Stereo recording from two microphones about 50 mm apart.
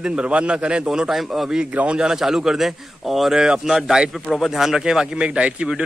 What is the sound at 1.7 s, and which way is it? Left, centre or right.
Speech, right.